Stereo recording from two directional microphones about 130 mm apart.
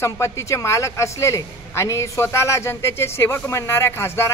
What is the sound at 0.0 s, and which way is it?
A man's voice, 20° left (ahead or behind).